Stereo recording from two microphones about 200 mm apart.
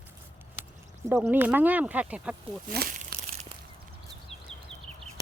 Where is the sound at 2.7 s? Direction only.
50° right (ahead or behind).